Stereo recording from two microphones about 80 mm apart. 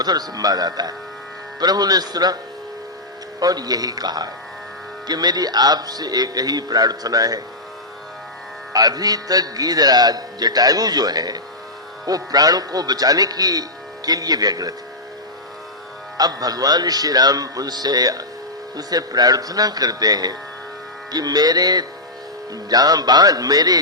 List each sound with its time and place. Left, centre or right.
0.0 s speech: right
3.4 s a man's voice: right
8.7 s a man's voice: right
16.1 s a man's voice: right